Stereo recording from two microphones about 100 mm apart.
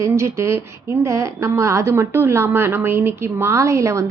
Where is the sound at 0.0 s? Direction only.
30° right (ahead or behind).